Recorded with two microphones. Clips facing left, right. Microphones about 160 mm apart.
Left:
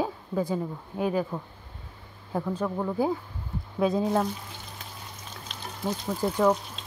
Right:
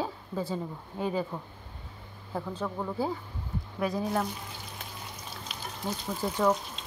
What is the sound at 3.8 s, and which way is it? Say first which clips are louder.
Speech: left 5 dB; 25° left (ahead or behind).